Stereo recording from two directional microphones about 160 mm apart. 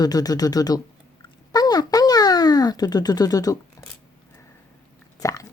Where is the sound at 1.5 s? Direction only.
25° left (ahead or behind).